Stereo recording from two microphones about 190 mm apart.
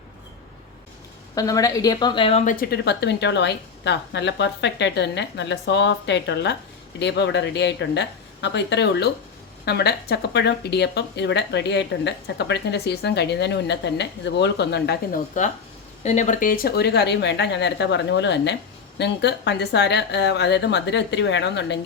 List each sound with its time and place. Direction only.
1.4 s a woman's voice: 20° left (ahead or behind)
2.4 s speech: 45° left (ahead or behind)
16.0 s speech: 40° left (ahead or behind); by 21.8 s 65° left (ahead or behind)